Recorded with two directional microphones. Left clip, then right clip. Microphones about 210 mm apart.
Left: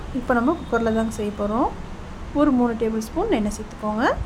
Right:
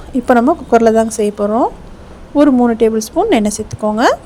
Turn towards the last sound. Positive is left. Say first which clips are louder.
# right 10 dB
turn(degrees=-35)  # may be behind; listen again after turning